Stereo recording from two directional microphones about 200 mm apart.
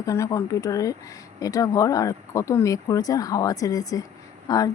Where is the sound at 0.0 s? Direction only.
15° left (ahead or behind).